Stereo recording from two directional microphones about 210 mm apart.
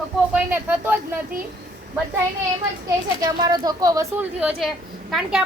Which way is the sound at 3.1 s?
20° right (ahead or behind).